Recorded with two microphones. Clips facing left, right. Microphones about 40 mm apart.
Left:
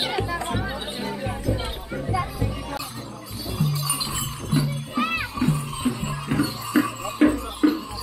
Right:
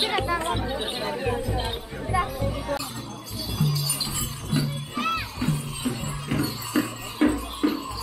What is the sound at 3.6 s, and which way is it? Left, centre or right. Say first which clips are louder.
Music: even; left.